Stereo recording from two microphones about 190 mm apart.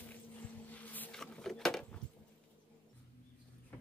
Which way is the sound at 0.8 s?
10° left (ahead or behind).